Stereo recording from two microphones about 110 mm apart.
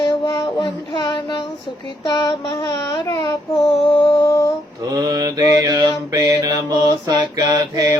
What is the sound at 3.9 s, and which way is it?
Child singing, 50° left (ahead or behind).